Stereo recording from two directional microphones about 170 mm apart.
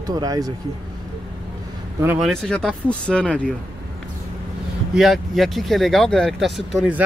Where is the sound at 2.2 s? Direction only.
5° left (ahead or behind).